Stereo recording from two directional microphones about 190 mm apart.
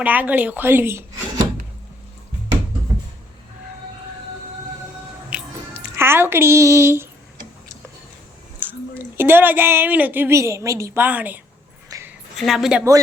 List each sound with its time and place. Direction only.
0.0 s speech: 10° right (ahead or behind)
5.3 s chewing: 5° right (ahead or behind)
6.0 s a woman's voice: 10° right (ahead or behind)
8.5 s speech: 10° right (ahead or behind)
11.9 s a sound: 15° right (ahead or behind)
12.4 s a woman's voice: centre (ahead or behind)